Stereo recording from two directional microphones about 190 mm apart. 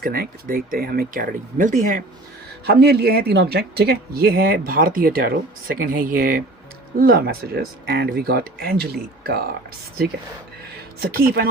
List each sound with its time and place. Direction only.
0.0 s speech: 50° right (ahead or behind)
2.6 s speech: 60° right (ahead or behind)
11.0 s speech: 50° right (ahead or behind)